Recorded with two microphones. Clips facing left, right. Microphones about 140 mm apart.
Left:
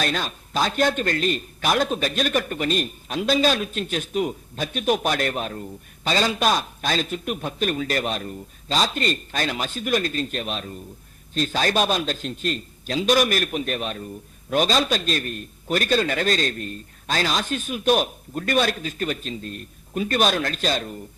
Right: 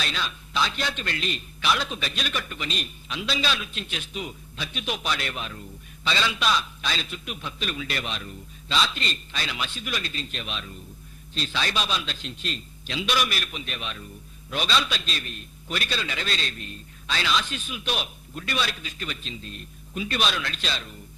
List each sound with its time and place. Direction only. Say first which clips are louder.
0.0 s a man's voice: left 6 dB; 45° left (ahead or behind)